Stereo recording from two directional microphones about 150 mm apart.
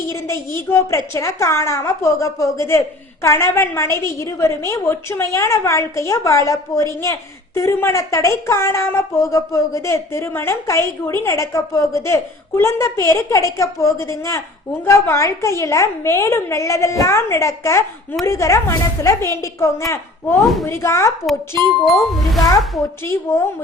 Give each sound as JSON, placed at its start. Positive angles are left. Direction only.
{"t": 0.1, "sound": "a woman's voice", "side_deg": 20}
{"t": 20.4, "sound": "a child's voice", "side_deg": 0}
{"t": 20.7, "sound": "a woman's voice", "side_deg": 20}
{"t": 21.8, "sound": "a child's voice", "side_deg": 0}
{"t": 23.3, "sound": "a woman's voice", "side_deg": 20}